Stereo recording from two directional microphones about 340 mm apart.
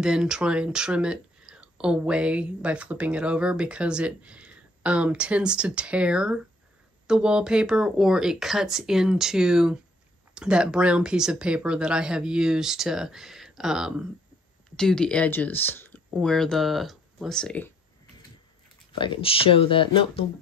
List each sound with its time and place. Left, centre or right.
0.0 s speech: centre
18.9 s speech: centre